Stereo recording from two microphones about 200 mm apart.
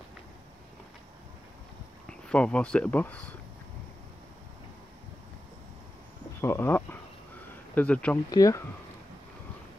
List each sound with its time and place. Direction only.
2.0 s speech: 5° left (ahead or behind)
6.4 s speech: 10° left (ahead or behind)
8.3 s speech: 15° left (ahead or behind)